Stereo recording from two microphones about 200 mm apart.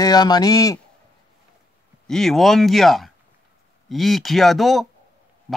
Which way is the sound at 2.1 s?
Centre (ahead or behind).